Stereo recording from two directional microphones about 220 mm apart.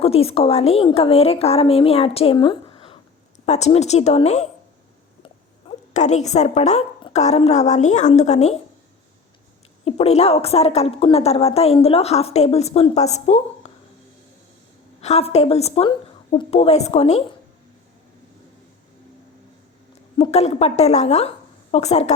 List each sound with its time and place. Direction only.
0.0 s a woman's voice: 25° left (ahead or behind)
5.9 s a woman's voice: 30° left (ahead or behind)
9.8 s a woman's voice: 30° left (ahead or behind)
15.0 s a woman's voice: 30° left (ahead or behind)
20.1 s a woman's voice: 25° left (ahead or behind)